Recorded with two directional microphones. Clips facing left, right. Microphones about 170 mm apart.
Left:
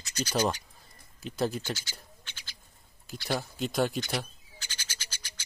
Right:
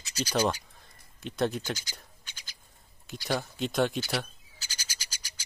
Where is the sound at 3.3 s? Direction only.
Centre (ahead or behind).